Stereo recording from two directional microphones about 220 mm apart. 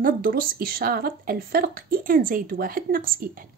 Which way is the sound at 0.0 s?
40° right (ahead or behind).